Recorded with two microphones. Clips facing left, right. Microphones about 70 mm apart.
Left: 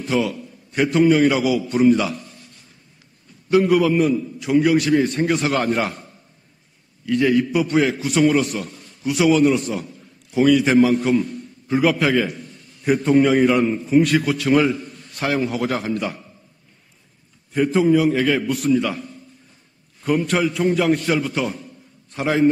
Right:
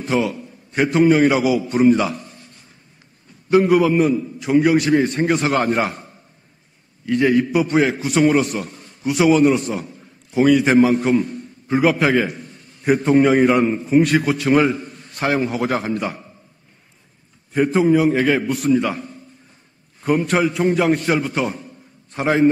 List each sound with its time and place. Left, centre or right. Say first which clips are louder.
0.0 s a man's voice: right 1 dB; right
3.4 s a man's voice: right 2 dB; right
5.9 s a man's voice: right 2 dB; right
7.1 s a man's voice: right 1 dB; right
17.5 s a man's voice: right 1 dB; right